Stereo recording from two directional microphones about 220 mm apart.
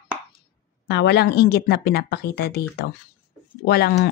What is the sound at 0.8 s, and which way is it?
Speech, 50° left (ahead or behind).